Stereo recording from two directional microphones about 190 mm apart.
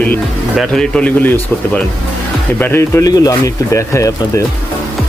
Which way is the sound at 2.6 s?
10° left (ahead or behind).